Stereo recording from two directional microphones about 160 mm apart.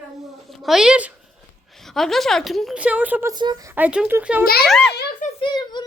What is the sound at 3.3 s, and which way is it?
Speech, 25° right (ahead or behind).